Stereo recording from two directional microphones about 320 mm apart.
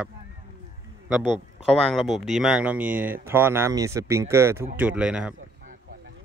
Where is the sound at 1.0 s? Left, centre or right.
Centre.